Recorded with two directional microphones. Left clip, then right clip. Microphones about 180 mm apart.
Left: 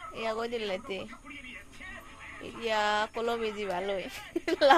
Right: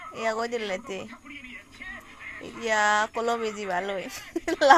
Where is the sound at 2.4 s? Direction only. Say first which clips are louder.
Right 5 dB; 20° right (ahead or behind).